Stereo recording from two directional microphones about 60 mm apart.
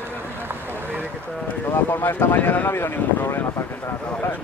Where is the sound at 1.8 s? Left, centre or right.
Left.